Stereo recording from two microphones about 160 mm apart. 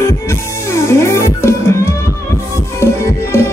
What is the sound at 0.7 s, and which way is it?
Music, 20° left (ahead or behind).